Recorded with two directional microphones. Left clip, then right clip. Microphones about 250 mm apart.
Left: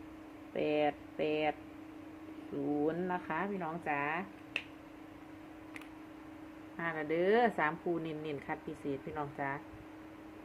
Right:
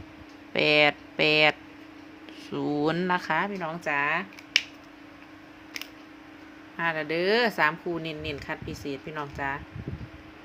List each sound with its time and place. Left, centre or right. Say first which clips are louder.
0.5 s speech: right 11 dB; right
2.8 s speech: right 11 dB; right
3.2 s speech: right 9 dB; right
6.7 s speech: right 7 dB; centre